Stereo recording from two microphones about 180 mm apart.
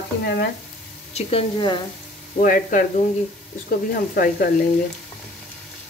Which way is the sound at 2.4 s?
50° left (ahead or behind).